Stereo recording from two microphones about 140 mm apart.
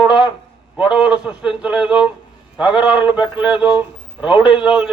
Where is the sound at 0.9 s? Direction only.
5° right (ahead or behind).